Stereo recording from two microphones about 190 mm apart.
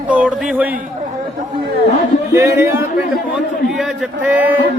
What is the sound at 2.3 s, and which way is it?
A man's voice, 15° right (ahead or behind).